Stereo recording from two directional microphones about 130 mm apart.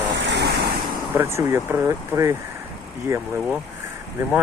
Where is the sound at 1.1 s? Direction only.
20° right (ahead or behind).